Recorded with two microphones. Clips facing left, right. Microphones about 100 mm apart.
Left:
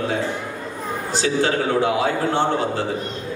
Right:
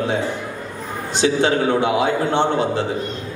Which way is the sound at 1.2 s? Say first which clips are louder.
Right 3 dB; 20° right (ahead or behind).